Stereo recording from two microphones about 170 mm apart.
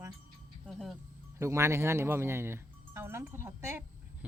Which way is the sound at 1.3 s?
15° right (ahead or behind).